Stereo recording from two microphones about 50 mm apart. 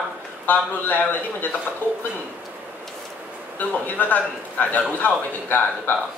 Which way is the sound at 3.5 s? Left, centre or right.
Left.